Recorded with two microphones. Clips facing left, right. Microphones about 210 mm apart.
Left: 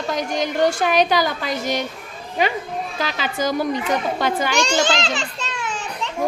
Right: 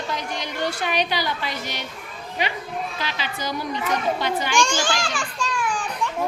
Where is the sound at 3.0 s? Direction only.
45° left (ahead or behind).